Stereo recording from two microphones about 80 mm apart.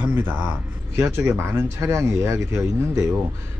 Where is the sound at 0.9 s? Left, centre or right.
Right.